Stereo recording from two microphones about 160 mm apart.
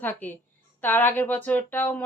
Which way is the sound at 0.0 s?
10° left (ahead or behind).